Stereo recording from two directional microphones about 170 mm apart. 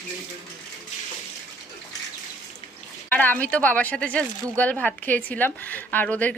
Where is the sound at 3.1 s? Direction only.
10° left (ahead or behind).